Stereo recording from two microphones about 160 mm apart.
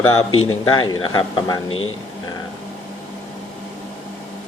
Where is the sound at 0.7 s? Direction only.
30° left (ahead or behind).